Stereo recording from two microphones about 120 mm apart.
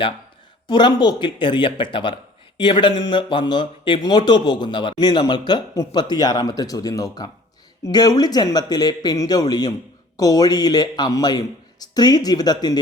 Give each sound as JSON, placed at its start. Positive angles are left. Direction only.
{"t": 0.7, "sound": "speech", "side_deg": 40}